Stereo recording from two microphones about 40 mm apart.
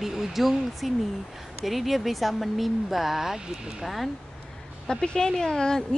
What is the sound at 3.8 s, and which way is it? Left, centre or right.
Speech, centre.